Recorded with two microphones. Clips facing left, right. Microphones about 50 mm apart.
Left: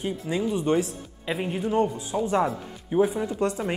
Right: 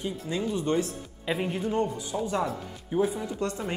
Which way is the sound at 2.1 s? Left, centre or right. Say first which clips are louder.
Left 5 dB; left.